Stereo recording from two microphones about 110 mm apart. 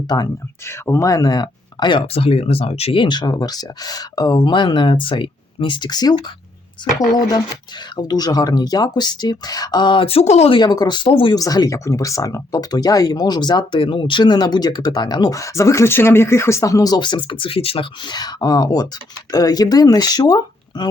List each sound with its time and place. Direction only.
0.1 s speech: 40° left (ahead or behind)
0.9 s speech: 30° left (ahead or behind)
2.1 s speech: 65° left (ahead or behind); by 6.1 s 40° left (ahead or behind)
7.2 s speech: 40° left (ahead or behind)
10.2 s speech: 75° left (ahead or behind)
10.5 s speech: 40° left (ahead or behind)
11.3 s speech: 35° left (ahead or behind); by 17.8 s 60° left (ahead or behind)
18.1 s speech: 40° left (ahead or behind)